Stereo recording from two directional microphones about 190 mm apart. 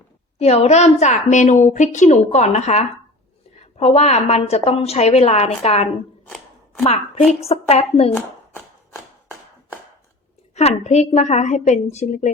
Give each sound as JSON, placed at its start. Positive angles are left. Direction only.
{"t": 0.3, "sound": "a woman's voice", "side_deg": 35}
{"t": 7.3, "sound": "a woman's voice", "side_deg": 35}
{"t": 8.1, "sound": "shuffling cards", "side_deg": 10}
{"t": 10.5, "sound": "a woman's voice", "side_deg": 35}